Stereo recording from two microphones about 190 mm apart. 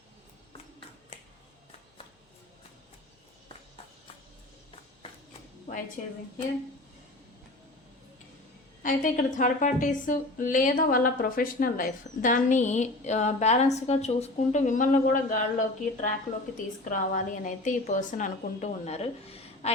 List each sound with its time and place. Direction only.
8.8 s a woman's voice: 45° left (ahead or behind)